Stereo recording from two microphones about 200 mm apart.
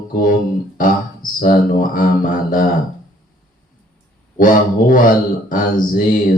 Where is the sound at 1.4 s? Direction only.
45° left (ahead or behind).